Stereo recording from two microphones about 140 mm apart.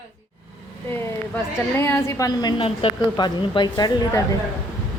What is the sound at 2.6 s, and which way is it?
A woman's voice, 40° left (ahead or behind).